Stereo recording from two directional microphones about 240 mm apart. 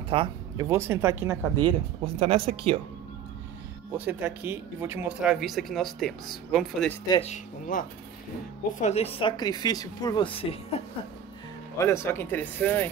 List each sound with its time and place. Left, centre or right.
0.1 s speech: centre
3.9 s speech: centre
7.1 s speech: left
8.8 s speech: left
11.8 s speech: centre